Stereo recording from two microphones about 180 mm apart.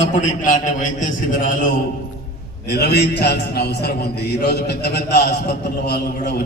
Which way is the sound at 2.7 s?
65° left (ahead or behind).